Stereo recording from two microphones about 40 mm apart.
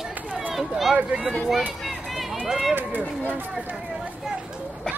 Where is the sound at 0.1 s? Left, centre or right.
Right.